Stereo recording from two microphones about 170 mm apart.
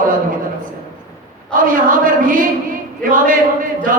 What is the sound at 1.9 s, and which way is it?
Speech, 50° right (ahead or behind).